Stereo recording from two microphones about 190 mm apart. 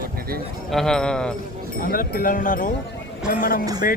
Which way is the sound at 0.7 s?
Centre (ahead or behind).